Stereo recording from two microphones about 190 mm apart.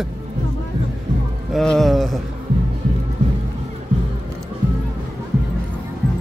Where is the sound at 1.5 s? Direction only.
Centre (ahead or behind).